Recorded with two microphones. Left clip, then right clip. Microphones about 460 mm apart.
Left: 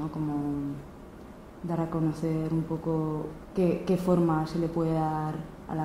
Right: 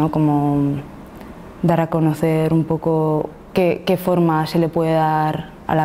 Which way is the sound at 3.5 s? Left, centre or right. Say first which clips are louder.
Right 10 dB; right.